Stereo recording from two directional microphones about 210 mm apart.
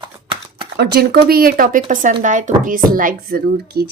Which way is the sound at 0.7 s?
50° right (ahead or behind).